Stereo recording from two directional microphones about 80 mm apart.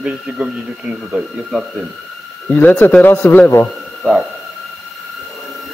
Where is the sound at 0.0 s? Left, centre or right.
Centre.